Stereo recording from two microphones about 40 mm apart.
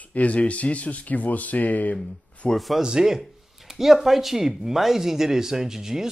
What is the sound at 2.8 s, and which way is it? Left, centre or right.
Speech, centre.